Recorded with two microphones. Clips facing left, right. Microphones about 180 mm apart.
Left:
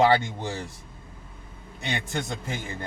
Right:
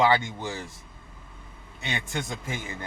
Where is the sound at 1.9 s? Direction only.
40° left (ahead or behind).